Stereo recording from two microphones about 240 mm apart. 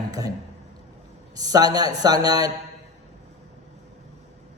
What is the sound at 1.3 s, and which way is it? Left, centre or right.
A man's voice, centre.